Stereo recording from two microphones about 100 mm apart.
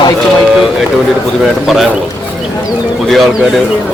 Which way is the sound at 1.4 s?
Centre (ahead or behind).